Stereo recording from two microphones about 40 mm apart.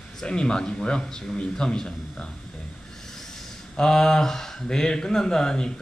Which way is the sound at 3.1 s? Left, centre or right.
Centre.